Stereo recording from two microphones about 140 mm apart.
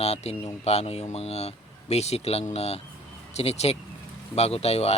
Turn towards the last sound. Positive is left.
turn(degrees=45)  # may be behind; listen again after turning